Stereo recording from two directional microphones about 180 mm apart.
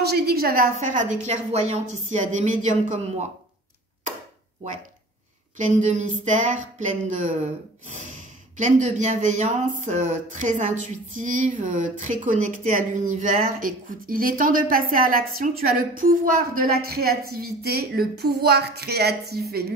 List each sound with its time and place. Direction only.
0.0 s a woman's voice: 60° right (ahead or behind); by 3.0 s 45° right (ahead or behind)
5.6 s a woman's voice: 45° right (ahead or behind)
8.5 s a woman's voice: 45° right (ahead or behind); by 19.4 s 65° right (ahead or behind)